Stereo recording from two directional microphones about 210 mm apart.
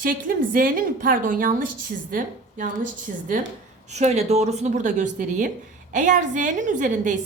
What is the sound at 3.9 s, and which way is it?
A woman's voice, 30° right (ahead or behind).